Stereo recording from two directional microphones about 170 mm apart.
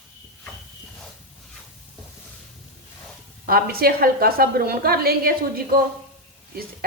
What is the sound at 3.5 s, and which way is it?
A woman's voice, 60° right (ahead or behind).